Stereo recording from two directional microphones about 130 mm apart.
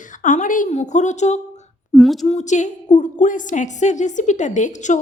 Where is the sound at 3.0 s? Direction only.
75° left (ahead or behind).